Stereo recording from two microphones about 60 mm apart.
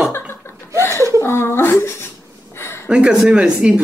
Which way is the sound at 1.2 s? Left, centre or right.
Left.